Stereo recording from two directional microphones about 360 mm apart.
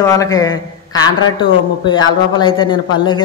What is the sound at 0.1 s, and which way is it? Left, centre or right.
A man's voice, centre.